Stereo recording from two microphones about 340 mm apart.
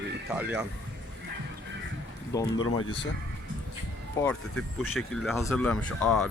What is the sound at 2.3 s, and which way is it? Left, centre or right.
Speech, centre.